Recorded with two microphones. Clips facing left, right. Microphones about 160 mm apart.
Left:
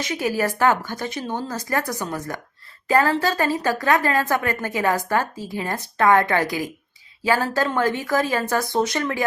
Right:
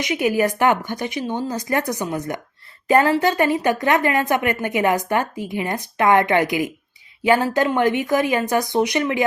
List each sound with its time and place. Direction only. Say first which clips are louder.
0.0 s a woman's voice: right 4 dB; 15° right (ahead or behind)